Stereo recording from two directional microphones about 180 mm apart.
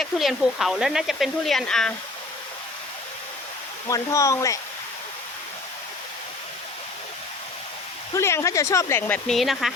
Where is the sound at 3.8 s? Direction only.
20° left (ahead or behind).